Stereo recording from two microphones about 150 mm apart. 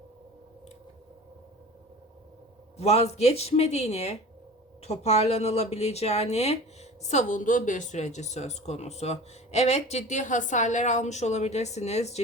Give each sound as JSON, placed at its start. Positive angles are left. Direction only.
{"t": 2.7, "sound": "speech", "side_deg": 45}